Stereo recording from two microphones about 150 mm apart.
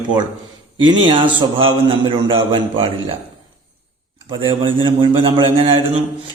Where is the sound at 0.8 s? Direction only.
30° right (ahead or behind).